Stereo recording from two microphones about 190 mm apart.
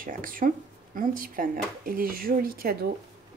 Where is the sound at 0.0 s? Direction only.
45° right (ahead or behind).